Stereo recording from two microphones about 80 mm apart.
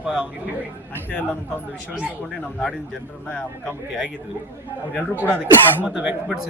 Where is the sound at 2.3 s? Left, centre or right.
Centre.